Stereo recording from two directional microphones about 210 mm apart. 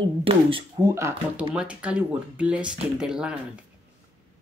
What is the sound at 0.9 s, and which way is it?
Speech, 15° right (ahead or behind).